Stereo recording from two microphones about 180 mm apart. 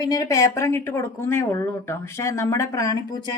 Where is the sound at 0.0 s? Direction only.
20° left (ahead or behind).